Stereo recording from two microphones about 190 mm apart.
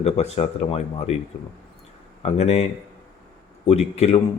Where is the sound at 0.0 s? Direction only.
35° left (ahead or behind).